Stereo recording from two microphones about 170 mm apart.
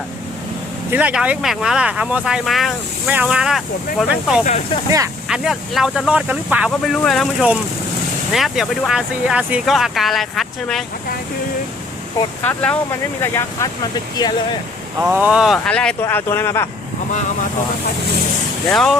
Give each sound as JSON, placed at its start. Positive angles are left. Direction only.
{"t": 0.9, "sound": "speech", "side_deg": -5}
{"t": 6.7, "sound": "speech", "side_deg": 5}
{"t": 12.4, "sound": "speech", "side_deg": 10}
{"t": 14.9, "sound": "speech", "side_deg": -10}
{"t": 18.7, "sound": "speech", "side_deg": 0}